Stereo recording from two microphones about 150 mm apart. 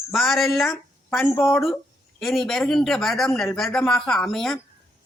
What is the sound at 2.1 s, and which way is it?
A woman's voice, centre (ahead or behind).